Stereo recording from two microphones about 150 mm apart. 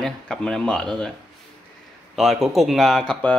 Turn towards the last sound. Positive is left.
turn(degrees=10)  # may be behind; listen again after turning